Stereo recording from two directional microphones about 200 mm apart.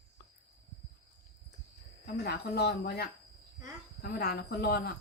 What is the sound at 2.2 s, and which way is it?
Speech, 55° left (ahead or behind).